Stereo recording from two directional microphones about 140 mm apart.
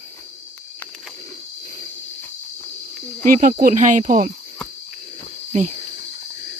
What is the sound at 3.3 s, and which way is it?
Speech, 75° right (ahead or behind).